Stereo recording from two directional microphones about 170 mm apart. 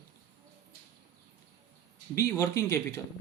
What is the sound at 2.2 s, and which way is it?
Speech, 20° left (ahead or behind).